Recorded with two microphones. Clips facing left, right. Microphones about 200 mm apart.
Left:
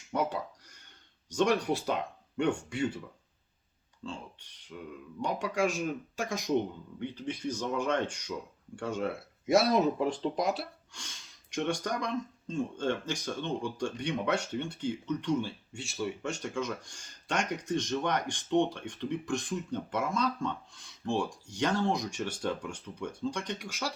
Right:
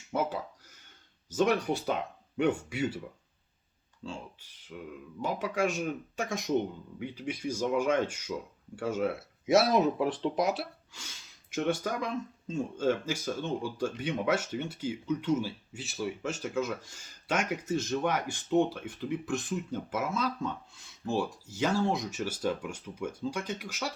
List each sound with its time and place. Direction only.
0.1 s a sound: centre (ahead or behind)
1.3 s speech: centre (ahead or behind)
4.0 s speech: 5° right (ahead or behind)